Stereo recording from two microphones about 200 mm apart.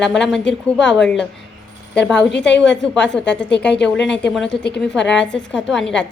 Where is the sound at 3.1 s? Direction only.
15° right (ahead or behind).